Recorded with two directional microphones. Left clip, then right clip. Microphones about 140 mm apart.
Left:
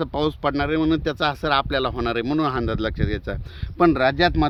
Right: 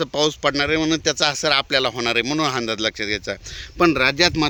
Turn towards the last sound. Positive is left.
turn(degrees=60)  # may be behind; listen again after turning